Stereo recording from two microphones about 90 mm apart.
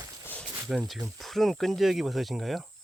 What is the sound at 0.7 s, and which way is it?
Speech, 5° right (ahead or behind).